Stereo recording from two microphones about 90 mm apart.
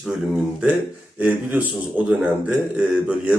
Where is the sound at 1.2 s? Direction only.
20° right (ahead or behind).